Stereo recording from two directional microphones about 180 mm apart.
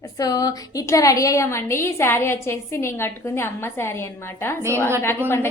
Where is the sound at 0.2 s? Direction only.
20° left (ahead or behind).